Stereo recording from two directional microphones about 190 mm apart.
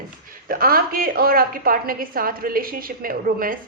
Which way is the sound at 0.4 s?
50° right (ahead or behind).